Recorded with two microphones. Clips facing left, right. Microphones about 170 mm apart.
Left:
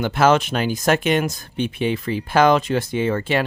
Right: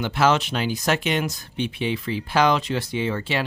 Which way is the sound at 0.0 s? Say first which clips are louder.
Left 4 dB; 50° left (ahead or behind).